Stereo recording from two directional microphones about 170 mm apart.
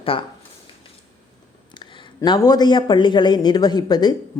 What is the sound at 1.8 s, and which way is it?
Speech, 25° left (ahead or behind).